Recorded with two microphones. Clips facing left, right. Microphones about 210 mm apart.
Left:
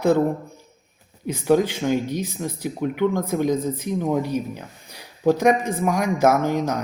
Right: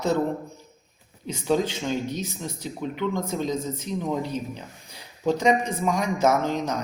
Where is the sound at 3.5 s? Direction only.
55° left (ahead or behind).